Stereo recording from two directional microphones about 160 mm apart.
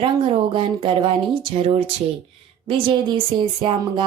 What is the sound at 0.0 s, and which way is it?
Speech, 35° right (ahead or behind).